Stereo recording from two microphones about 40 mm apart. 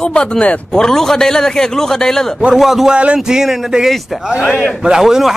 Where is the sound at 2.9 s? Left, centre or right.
Right.